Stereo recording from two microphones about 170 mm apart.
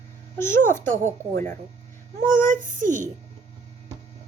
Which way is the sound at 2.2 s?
50° right (ahead or behind).